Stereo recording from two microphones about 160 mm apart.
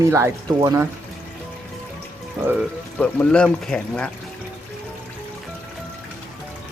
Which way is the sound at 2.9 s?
10° left (ahead or behind).